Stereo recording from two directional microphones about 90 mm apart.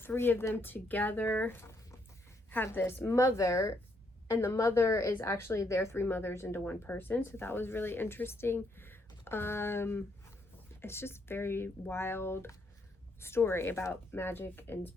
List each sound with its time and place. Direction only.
0.0 s speech: 25° left (ahead or behind)